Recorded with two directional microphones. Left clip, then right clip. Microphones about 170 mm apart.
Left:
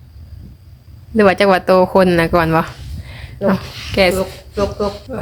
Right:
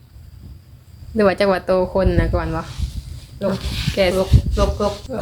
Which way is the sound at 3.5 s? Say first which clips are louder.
Left 5 dB; 30° left (ahead or behind).